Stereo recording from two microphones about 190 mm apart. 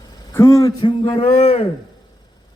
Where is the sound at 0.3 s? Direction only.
15° left (ahead or behind); by 1.6 s 30° left (ahead or behind).